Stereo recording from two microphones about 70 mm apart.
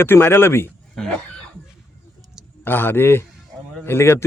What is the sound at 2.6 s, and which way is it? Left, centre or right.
A man's voice, left.